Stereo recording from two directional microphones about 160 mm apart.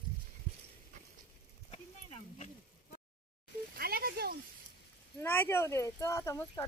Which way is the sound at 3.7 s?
70° right (ahead or behind).